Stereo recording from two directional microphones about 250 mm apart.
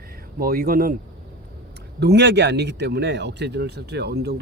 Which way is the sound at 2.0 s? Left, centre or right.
Right.